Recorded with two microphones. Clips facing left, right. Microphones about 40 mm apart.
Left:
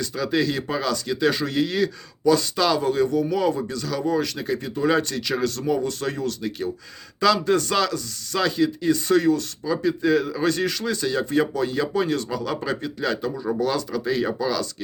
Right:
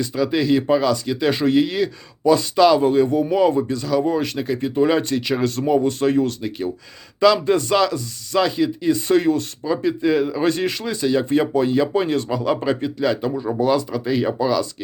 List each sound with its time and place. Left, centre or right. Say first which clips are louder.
0.0 s speech: right 3 dB; centre
1.3 s speech: right 6 dB; right
7.2 s speech: right 4 dB; centre
9.8 s speech: right 2 dB; centre
11.3 s speech: right 4 dB; right
13.6 s speech: right 7 dB; centre